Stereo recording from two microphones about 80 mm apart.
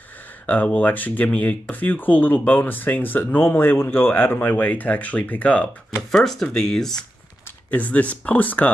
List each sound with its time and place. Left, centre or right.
0.5 s speech: centre
6.1 s speech: centre
7.7 s speech: centre